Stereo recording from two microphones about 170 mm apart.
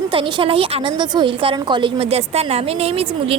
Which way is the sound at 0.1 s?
30° right (ahead or behind).